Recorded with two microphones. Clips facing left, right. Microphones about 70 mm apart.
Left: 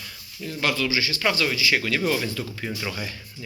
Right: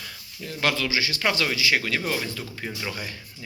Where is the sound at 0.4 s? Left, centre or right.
Right.